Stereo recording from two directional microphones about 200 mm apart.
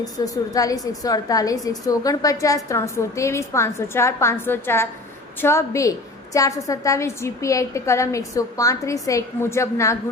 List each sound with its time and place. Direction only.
0.2 s a woman's voice: 20° left (ahead or behind)